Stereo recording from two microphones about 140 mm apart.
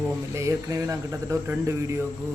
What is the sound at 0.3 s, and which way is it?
Speech, 20° right (ahead or behind).